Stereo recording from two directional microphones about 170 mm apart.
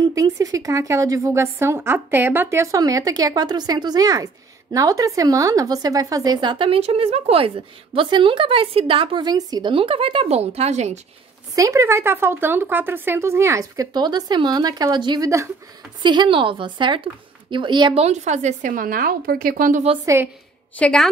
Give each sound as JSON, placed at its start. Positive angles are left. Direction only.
{"t": 0.0, "sound": "a woman's voice", "side_deg": -20}
{"t": 11.5, "sound": "a woman's voice", "side_deg": -20}
{"t": 20.7, "sound": "a woman's voice", "side_deg": 5}